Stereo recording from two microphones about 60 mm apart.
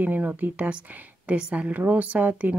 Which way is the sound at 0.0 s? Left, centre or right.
Right.